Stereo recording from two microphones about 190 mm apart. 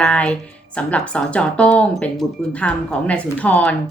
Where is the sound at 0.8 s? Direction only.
5° left (ahead or behind).